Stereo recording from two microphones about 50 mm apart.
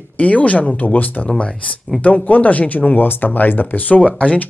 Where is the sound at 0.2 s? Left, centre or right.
Left.